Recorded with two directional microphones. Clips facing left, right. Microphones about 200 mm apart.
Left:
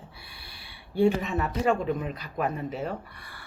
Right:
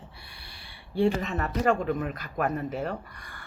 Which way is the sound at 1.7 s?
Centre (ahead or behind).